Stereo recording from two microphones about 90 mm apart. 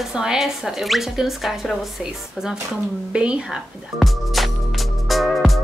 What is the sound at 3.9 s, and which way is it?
Music, centre (ahead or behind).